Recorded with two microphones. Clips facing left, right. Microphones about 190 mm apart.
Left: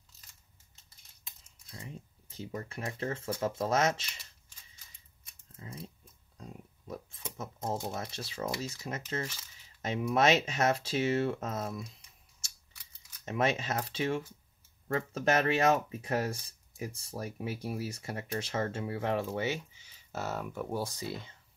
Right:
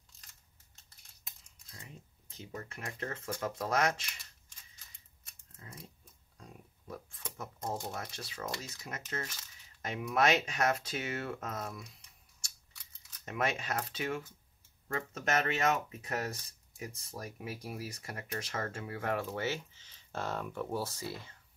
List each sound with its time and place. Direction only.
2.3 s speech: 35° left (ahead or behind)
6.9 s a sound: 20° left (ahead or behind)
7.9 s speech: 25° left (ahead or behind)
13.2 s speech: 25° left (ahead or behind)